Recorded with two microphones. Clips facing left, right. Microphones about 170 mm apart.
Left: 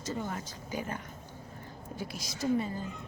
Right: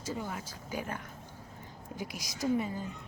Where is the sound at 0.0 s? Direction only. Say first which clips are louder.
Left 2 dB; 10° right (ahead or behind).